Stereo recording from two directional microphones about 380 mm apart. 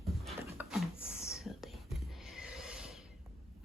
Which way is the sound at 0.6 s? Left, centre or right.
Centre.